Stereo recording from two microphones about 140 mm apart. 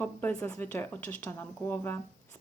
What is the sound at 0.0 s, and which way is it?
Speech, 15° left (ahead or behind).